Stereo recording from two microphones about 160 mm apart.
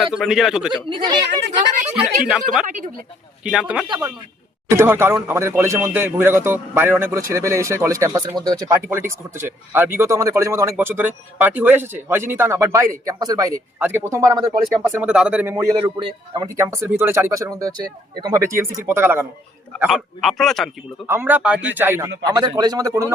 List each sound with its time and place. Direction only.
0.1 s a man's voice: 5° right (ahead or behind)
0.9 s speech: 30° right (ahead or behind)
2.2 s a man's voice: 5° right (ahead or behind)
2.6 s speech: 55° right (ahead or behind)
3.4 s a man's voice: 5° right (ahead or behind)
4.8 s speech: 15° right (ahead or behind)
15.7 s speech: 35° right (ahead or behind); by 19.2 s 15° right (ahead or behind)
19.9 s a man's voice: centre (ahead or behind)
21.1 s speech: 15° right (ahead or behind)